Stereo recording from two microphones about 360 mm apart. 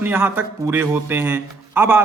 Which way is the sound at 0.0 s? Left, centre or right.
Centre.